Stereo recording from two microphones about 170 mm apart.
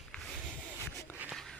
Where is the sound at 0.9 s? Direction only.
15° left (ahead or behind).